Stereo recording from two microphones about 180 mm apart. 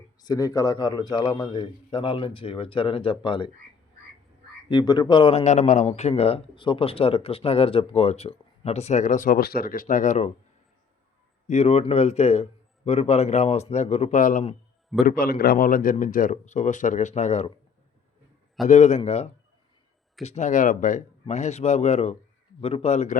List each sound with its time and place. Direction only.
0.2 s a man's voice: 20° left (ahead or behind)
4.7 s speech: 25° left (ahead or behind); by 10.3 s 40° left (ahead or behind)
11.4 s speech: 35° left (ahead or behind)
15.0 s speech: 55° left (ahead or behind); by 17.5 s 40° left (ahead or behind)
18.7 s speech: 40° left (ahead or behind)